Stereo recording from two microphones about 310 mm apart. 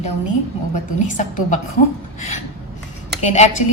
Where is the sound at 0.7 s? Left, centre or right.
Left.